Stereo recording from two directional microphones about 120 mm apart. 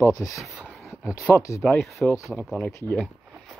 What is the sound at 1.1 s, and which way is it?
Speech, 25° left (ahead or behind).